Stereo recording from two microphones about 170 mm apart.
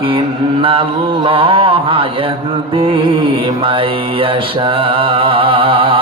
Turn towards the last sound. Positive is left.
turn(degrees=-30)  # may be behind; listen again after turning